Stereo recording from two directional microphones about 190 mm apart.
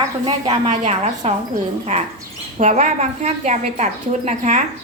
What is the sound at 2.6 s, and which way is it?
A woman's voice, 40° right (ahead or behind).